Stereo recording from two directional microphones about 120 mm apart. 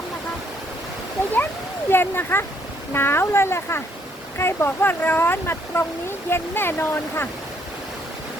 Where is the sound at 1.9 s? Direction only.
20° left (ahead or behind).